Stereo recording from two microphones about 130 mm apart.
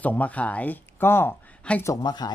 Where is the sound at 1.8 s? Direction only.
35° left (ahead or behind).